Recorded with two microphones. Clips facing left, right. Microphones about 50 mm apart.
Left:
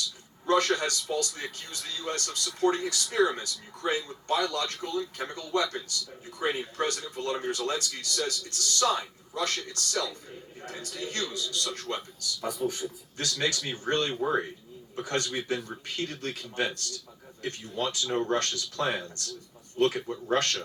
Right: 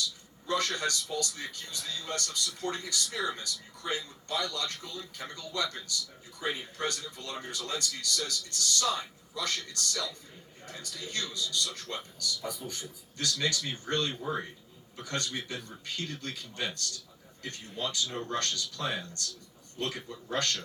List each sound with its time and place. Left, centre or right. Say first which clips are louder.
0.4 s speech: left 6 dB; left
14.2 s speech: left 7 dB; left